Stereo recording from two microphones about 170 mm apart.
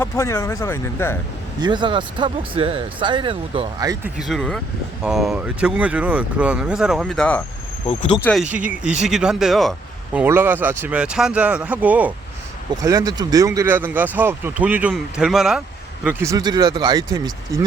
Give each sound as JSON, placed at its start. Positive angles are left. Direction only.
{"t": 0.0, "sound": "speech", "side_deg": 15}
{"t": 1.6, "sound": "speech", "side_deg": -25}
{"t": 4.2, "sound": "speech", "side_deg": 0}
{"t": 7.9, "sound": "speech", "side_deg": 35}
{"t": 8.2, "sound": "speech", "side_deg": 5}
{"t": 8.5, "sound": "speech", "side_deg": -10}
{"t": 10.2, "sound": "speech", "side_deg": -10}
{"t": 12.7, "sound": "speech", "side_deg": -20}
{"t": 16.0, "sound": "speech", "side_deg": -15}